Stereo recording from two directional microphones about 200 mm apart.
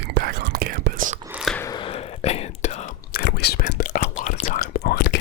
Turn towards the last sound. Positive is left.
turn(degrees=55)  # may be behind; listen again after turning